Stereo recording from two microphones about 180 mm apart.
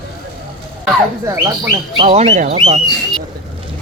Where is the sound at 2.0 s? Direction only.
35° right (ahead or behind).